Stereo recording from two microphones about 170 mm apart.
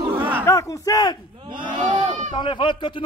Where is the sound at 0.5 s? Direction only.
20° left (ahead or behind).